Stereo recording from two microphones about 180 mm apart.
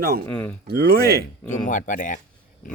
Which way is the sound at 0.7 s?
60° right (ahead or behind).